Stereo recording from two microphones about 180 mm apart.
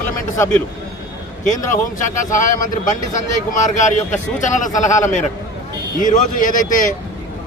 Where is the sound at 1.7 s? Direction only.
45° left (ahead or behind).